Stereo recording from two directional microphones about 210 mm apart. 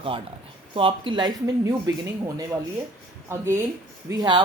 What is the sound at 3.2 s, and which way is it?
Speech, 10° right (ahead or behind).